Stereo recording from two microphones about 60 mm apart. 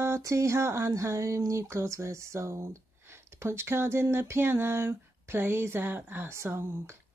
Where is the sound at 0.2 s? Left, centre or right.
Right.